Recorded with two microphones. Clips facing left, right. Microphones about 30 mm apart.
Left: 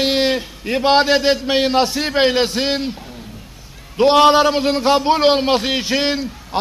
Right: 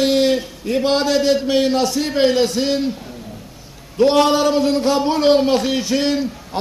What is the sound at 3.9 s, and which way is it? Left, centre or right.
A man's voice, left.